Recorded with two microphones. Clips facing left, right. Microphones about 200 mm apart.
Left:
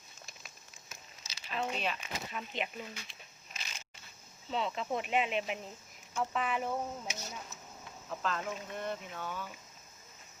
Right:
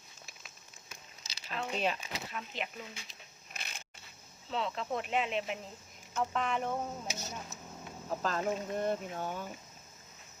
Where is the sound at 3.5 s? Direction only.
55° right (ahead or behind).